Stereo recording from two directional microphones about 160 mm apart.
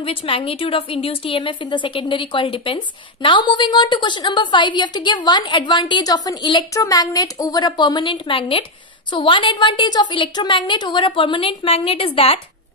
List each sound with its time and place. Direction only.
0.0 s a woman's voice: 35° left (ahead or behind)